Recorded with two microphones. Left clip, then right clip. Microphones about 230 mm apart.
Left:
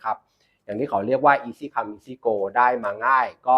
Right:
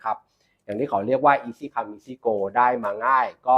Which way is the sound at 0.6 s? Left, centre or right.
Centre.